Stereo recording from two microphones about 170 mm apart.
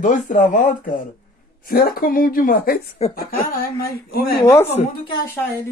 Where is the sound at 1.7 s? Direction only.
60° left (ahead or behind).